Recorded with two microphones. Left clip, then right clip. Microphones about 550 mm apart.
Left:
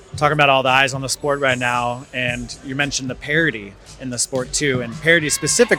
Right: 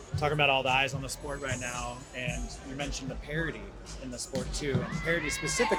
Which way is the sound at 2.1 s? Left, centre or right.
Left.